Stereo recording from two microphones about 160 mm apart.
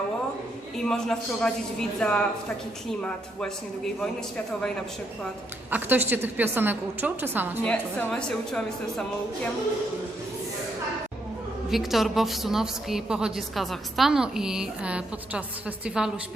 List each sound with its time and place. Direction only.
0.8 s a woman's voice: 5° left (ahead or behind)
5.7 s a woman's voice: 10° right (ahead or behind)
7.6 s a woman's voice: 5° left (ahead or behind)
11.7 s a woman's voice: centre (ahead or behind)